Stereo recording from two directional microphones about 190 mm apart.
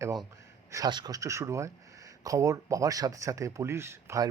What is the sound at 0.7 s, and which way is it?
Speech, 20° right (ahead or behind).